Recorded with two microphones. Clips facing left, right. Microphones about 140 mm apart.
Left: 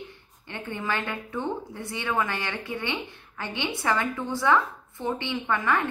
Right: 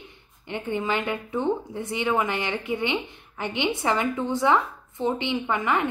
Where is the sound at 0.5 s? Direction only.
15° right (ahead or behind).